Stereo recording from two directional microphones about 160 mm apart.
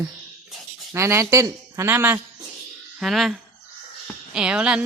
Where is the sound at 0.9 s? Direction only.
15° right (ahead or behind).